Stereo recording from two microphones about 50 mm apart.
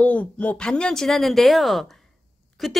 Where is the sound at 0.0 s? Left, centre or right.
Left.